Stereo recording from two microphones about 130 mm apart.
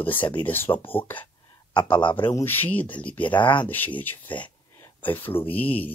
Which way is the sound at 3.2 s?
40° left (ahead or behind).